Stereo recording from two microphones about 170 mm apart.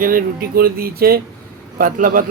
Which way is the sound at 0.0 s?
55° right (ahead or behind).